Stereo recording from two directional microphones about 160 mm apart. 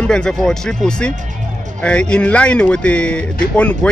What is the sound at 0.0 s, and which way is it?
A man's voice, 5° left (ahead or behind).